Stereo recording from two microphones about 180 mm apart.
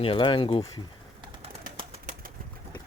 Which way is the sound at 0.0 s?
30° left (ahead or behind).